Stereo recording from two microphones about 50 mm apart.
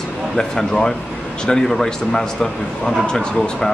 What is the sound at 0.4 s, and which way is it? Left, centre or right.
Speech, centre.